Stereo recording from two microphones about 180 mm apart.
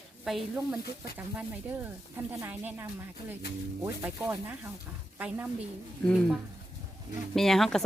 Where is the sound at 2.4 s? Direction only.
10° right (ahead or behind).